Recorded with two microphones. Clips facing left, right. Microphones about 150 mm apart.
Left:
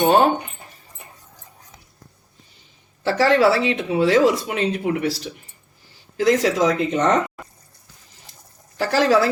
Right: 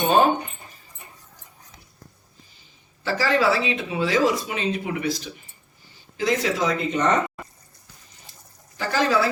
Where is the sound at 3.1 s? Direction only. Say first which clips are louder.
Left 5 dB; 75° left (ahead or behind).